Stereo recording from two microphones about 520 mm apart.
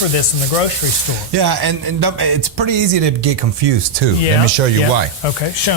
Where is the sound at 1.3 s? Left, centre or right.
Right.